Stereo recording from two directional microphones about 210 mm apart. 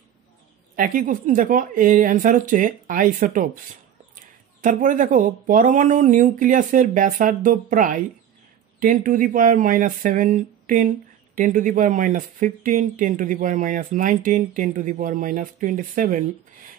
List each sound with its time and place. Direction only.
0.7 s speech: 40° right (ahead or behind)